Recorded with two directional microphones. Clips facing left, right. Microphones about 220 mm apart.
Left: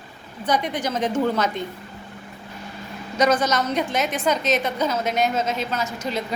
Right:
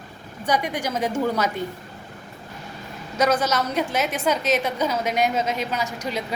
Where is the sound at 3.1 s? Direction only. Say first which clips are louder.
Left 1 dB; 5° right (ahead or behind).